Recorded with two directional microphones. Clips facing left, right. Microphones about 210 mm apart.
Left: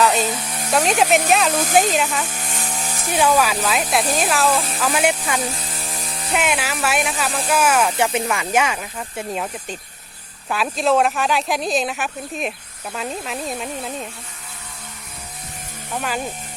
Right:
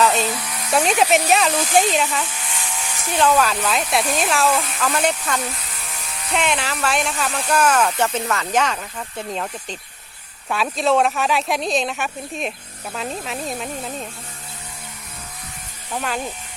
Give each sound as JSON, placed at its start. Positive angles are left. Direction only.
{"t": 0.0, "sound": "a sound", "side_deg": 0}
{"t": 0.3, "sound": "a sound", "side_deg": 25}
{"t": 1.1, "sound": "speech", "side_deg": 0}
{"t": 1.6, "sound": "speech", "side_deg": 50}
{"t": 1.9, "sound": "speech", "side_deg": 0}
{"t": 2.2, "sound": "chainsaw", "side_deg": 40}
{"t": 3.2, "sound": "speech", "side_deg": 10}
{"t": 4.8, "sound": "speech", "side_deg": 10}
{"t": 5.4, "sound": "a sound", "side_deg": 30}
{"t": 6.3, "sound": "speech", "side_deg": 5}
{"t": 16.0, "sound": "speech", "side_deg": 5}